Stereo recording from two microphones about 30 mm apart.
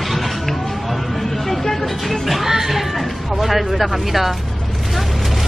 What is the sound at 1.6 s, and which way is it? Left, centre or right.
Vehicle, centre.